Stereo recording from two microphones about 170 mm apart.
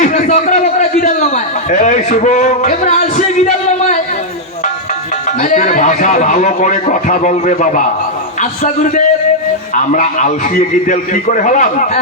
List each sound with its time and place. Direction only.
0.0 s a man's voice: 45° left (ahead or behind)
5.4 s a man's voice: 45° left (ahead or behind)